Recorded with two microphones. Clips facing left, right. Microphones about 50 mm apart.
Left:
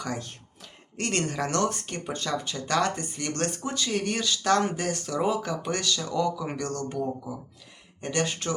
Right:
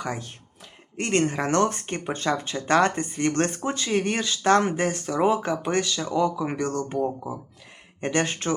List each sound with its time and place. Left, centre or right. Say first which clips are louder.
0.0 s speech: right 2 dB; centre; by 8.5 s right